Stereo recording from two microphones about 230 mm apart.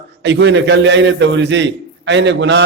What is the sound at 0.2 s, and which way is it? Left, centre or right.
A man's voice, right.